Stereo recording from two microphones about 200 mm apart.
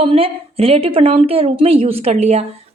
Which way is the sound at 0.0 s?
30° right (ahead or behind).